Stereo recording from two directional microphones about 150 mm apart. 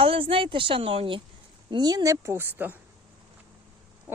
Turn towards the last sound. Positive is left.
turn(degrees=-15)  # may be behind; listen again after turning